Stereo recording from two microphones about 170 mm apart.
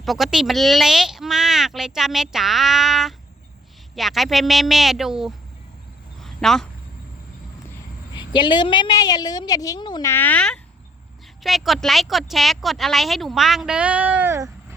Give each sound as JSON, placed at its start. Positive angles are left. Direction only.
{"t": 0.0, "sound": "speech", "side_deg": 0}
{"t": 6.2, "sound": "a sound", "side_deg": 0}
{"t": 8.3, "sound": "a woman's voice", "side_deg": 25}